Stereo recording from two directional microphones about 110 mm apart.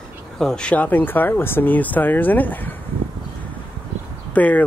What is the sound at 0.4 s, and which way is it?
Speech, 5° left (ahead or behind).